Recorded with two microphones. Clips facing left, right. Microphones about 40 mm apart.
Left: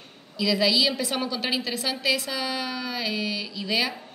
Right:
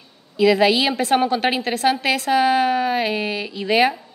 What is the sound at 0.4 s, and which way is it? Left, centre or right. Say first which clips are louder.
A woman's voice: right 7 dB; right.